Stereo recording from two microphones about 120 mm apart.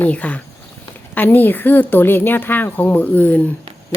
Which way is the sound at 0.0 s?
10° left (ahead or behind).